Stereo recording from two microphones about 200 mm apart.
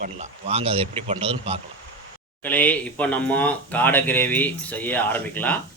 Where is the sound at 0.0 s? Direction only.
35° right (ahead or behind).